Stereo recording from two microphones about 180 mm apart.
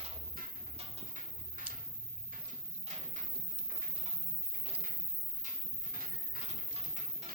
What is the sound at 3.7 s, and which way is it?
Pigeon, 50° right (ahead or behind).